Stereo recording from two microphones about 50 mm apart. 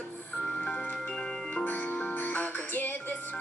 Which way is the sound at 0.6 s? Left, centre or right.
Centre.